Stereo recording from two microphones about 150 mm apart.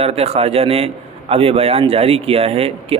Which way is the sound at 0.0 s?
45° right (ahead or behind).